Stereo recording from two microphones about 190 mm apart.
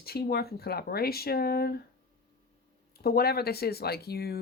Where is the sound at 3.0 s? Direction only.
55° left (ahead or behind).